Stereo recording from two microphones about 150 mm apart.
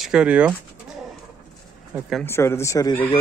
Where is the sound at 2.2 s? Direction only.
15° left (ahead or behind).